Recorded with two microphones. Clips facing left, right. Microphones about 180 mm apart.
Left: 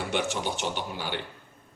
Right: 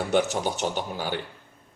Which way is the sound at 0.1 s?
40° right (ahead or behind).